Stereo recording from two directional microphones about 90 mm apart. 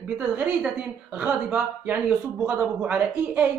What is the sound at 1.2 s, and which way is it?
A woman's voice, 15° right (ahead or behind).